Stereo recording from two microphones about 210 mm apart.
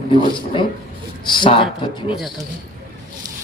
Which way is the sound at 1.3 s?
25° left (ahead or behind).